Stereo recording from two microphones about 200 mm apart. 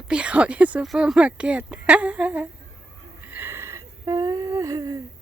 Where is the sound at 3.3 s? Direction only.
10° right (ahead or behind).